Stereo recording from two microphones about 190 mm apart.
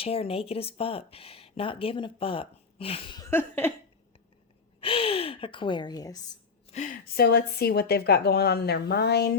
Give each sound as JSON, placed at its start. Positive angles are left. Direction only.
{"t": 0.0, "sound": "speech", "side_deg": 30}
{"t": 3.2, "sound": "a sound", "side_deg": 10}
{"t": 4.8, "sound": "a woman's voice", "side_deg": 30}
{"t": 6.7, "sound": "speech", "side_deg": 40}